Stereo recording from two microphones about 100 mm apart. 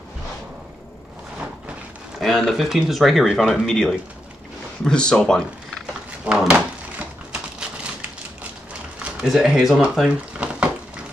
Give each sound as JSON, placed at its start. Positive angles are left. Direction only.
{"t": 2.1, "sound": "speech", "side_deg": 0}
{"t": 6.2, "sound": "a sound", "side_deg": -10}
{"t": 9.0, "sound": "speech", "side_deg": -5}